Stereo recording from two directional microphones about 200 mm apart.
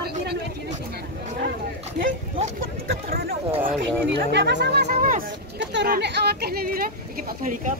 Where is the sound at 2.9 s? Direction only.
50° right (ahead or behind).